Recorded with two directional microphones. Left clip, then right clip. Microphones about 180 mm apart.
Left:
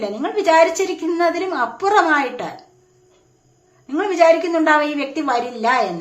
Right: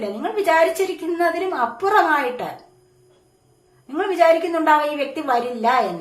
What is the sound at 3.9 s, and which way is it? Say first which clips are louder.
A woman's voice: left 2 dB; 20° left (ahead or behind).